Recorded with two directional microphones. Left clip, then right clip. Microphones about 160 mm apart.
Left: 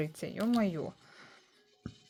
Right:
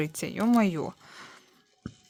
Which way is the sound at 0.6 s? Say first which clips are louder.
Right 7 dB; 35° right (ahead or behind).